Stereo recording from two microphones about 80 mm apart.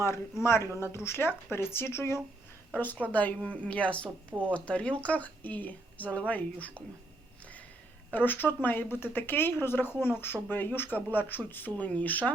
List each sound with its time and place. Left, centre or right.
0.4 s a woman's voice: left; by 4.1 s centre
4.3 s speech: right
4.5 s speech: centre
8.1 s speech: left